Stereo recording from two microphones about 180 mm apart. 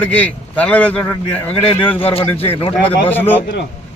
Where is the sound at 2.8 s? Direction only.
10° left (ahead or behind).